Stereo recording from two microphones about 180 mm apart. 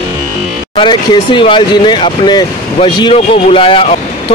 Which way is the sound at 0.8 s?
25° left (ahead or behind).